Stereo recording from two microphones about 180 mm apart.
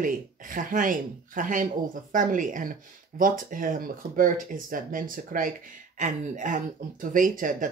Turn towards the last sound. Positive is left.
turn(degrees=-50)  # may be behind; listen again after turning